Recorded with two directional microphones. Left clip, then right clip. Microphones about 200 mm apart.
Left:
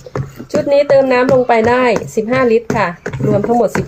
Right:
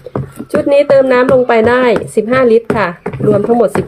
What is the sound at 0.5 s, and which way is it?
A woman's voice, 45° right (ahead or behind).